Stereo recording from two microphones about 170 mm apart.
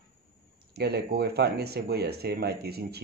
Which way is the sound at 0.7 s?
70° right (ahead or behind).